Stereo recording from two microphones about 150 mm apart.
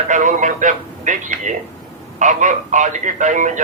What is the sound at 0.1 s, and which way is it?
A man's voice, 55° right (ahead or behind).